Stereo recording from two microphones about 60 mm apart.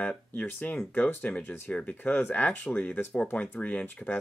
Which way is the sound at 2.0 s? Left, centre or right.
Left.